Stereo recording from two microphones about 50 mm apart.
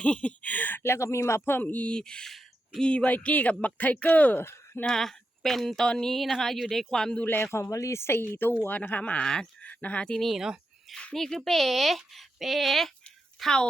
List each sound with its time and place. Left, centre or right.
0.0 s speech: left
0.8 s speech: left
1.6 s speech: left
1.9 s speech: centre
4.4 s speech: left
4.9 s speech: centre
7.2 s speech: left
7.5 s speech: left
8.3 s a woman's voice: left
9.2 s speech: centre
9.6 s speech: left
10.2 s speech: centre